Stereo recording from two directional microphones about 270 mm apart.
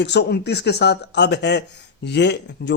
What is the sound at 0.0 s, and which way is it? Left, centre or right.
Speech, left.